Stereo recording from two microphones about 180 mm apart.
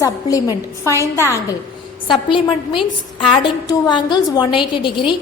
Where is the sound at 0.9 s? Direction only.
15° right (ahead or behind).